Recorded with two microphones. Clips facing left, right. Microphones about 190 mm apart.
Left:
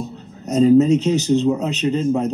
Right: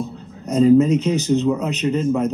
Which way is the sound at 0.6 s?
30° left (ahead or behind).